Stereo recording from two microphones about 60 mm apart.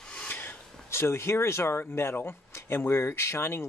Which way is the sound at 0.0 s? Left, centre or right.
Centre.